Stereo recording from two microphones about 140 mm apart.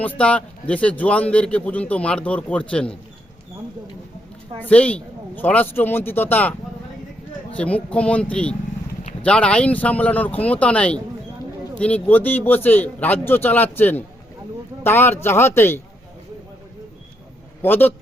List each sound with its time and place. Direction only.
0.0 s speech: 10° left (ahead or behind)
4.7 s speech: 10° left (ahead or behind)
7.5 s speech: 10° left (ahead or behind)
17.6 s speech: 15° left (ahead or behind)